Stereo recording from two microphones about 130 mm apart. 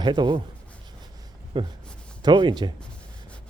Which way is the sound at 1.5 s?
40° right (ahead or behind).